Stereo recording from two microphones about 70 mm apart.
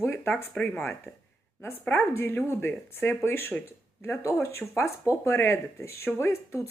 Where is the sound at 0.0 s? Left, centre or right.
Left.